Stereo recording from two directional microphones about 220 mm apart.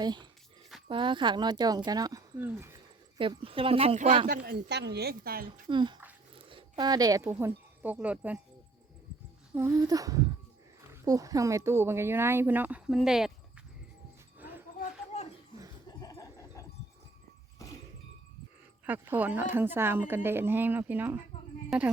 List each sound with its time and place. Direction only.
0.0 s speech: 20° right (ahead or behind)
3.2 s a woman's voice: 25° right (ahead or behind); by 5.5 s 45° right (ahead or behind)
5.6 s speech: 20° right (ahead or behind)
9.6 s speech: 15° right (ahead or behind)
14.3 s dog: 10° right (ahead or behind)
14.8 s a sound: 30° left (ahead or behind)
15.9 s a sound: 15° left (ahead or behind)
18.9 s speech: 10° right (ahead or behind)